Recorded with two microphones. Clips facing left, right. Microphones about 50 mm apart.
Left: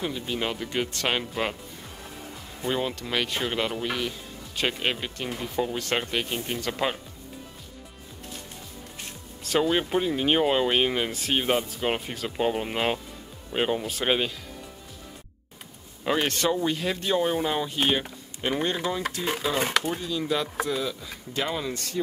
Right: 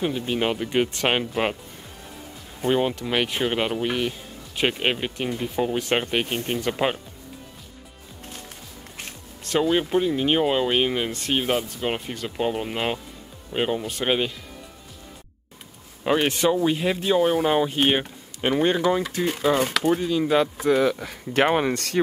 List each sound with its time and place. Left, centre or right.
0.0 s speech: right
2.6 s speech: right
9.4 s speech: centre
16.0 s speech: centre; by 20.4 s right
20.6 s speech: right